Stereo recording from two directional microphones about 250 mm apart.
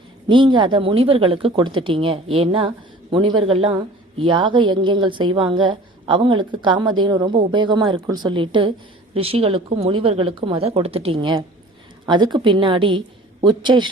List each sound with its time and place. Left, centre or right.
0.3 s a woman's voice: centre